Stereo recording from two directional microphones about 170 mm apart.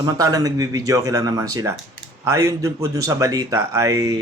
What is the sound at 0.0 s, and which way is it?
A man's voice, 20° right (ahead or behind).